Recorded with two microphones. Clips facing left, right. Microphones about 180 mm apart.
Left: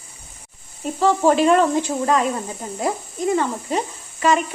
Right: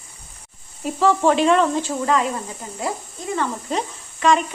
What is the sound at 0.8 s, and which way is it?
Speech, centre (ahead or behind).